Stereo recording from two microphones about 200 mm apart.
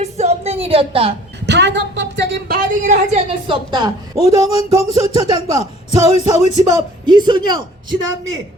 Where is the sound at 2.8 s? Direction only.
30° right (ahead or behind).